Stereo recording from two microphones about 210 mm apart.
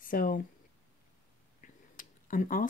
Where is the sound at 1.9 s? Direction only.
40° left (ahead or behind).